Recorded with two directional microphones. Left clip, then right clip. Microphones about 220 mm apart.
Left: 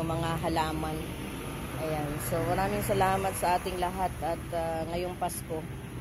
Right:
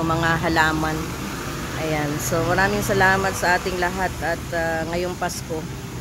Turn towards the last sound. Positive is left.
turn(degrees=-15)  # may be behind; listen again after turning